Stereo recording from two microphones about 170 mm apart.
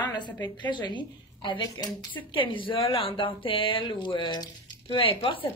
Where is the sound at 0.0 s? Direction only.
25° left (ahead or behind).